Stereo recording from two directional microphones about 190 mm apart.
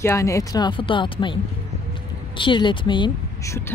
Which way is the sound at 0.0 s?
15° left (ahead or behind).